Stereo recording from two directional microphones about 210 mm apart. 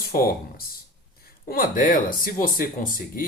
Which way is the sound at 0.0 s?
45° left (ahead or behind).